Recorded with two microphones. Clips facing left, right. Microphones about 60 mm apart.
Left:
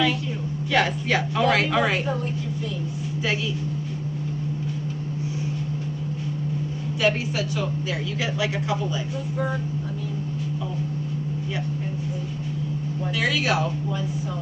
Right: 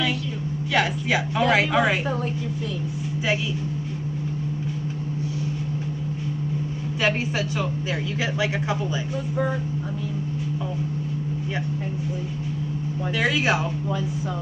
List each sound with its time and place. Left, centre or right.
0.7 s speech: centre
13.2 s speech: right